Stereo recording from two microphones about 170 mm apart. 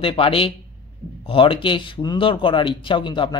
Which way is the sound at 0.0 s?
35° left (ahead or behind).